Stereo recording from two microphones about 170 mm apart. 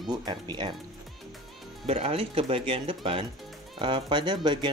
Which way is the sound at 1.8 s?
35° right (ahead or behind).